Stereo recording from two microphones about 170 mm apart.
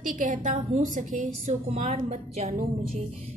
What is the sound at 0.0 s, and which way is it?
A woman's voice, 50° right (ahead or behind).